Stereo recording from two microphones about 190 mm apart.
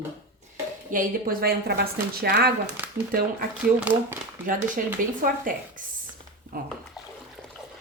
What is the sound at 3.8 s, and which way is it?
Speech, 10° right (ahead or behind).